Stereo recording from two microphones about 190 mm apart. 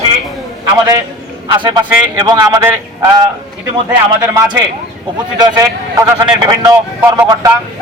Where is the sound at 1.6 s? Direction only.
20° right (ahead or behind).